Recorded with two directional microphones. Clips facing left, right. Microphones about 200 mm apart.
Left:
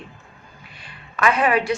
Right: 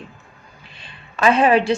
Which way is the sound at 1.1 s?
25° right (ahead or behind).